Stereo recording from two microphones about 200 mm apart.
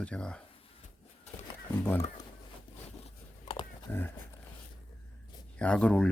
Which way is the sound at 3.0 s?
25° left (ahead or behind).